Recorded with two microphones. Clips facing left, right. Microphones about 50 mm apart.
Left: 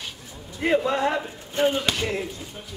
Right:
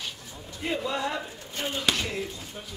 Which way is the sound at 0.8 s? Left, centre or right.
Left.